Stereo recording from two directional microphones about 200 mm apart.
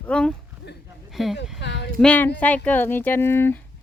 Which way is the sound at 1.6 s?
60° left (ahead or behind).